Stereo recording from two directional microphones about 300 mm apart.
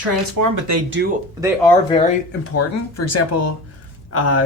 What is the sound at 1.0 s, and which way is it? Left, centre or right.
Speech, right.